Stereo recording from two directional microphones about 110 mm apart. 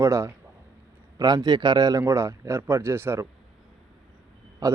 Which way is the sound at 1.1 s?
35° right (ahead or behind).